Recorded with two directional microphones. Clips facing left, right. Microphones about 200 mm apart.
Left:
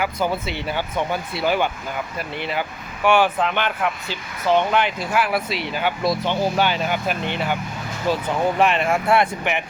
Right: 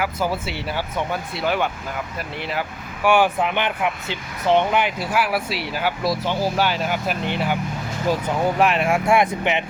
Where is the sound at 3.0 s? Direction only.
10° right (ahead or behind).